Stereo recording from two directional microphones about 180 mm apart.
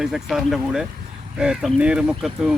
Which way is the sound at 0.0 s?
Centre (ahead or behind).